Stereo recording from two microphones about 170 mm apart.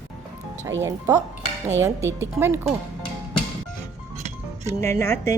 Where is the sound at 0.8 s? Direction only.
20° right (ahead or behind).